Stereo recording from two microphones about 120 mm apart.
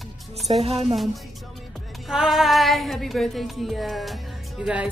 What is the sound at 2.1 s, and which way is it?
Music, 5° right (ahead or behind).